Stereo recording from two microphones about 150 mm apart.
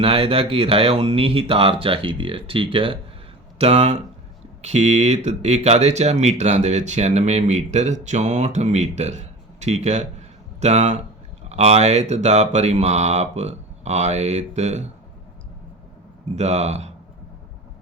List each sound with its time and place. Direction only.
0.0 s speech: 40° right (ahead or behind)
16.3 s speech: 50° right (ahead or behind)